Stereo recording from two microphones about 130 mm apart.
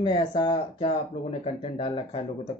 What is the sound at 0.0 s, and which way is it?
Speech, 35° left (ahead or behind).